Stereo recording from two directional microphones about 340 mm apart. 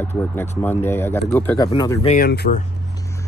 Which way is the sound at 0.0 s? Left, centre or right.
Centre.